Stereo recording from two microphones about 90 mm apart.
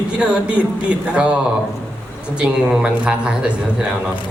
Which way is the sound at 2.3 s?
10° right (ahead or behind).